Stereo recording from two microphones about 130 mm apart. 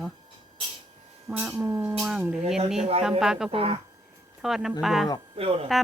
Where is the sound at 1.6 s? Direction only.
15° right (ahead or behind).